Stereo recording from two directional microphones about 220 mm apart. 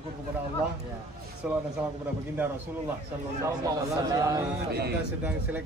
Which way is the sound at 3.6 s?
15° right (ahead or behind).